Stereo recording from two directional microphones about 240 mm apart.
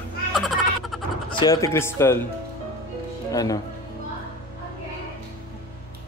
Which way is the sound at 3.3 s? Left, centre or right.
Centre.